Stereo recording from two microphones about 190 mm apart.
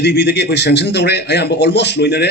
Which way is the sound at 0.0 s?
65° left (ahead or behind).